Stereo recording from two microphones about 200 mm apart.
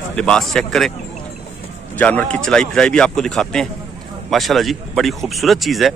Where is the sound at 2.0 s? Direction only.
10° left (ahead or behind).